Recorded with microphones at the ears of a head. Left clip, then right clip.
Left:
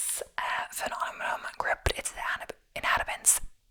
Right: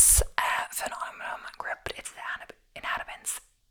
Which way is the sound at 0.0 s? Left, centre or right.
Right.